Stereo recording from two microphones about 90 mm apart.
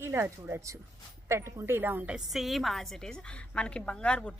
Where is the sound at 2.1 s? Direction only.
Centre (ahead or behind).